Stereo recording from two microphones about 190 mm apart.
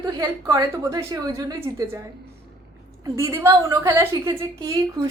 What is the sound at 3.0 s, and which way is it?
A woman's voice, 15° right (ahead or behind).